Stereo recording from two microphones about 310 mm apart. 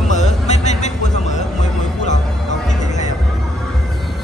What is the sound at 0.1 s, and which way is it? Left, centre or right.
Music, left.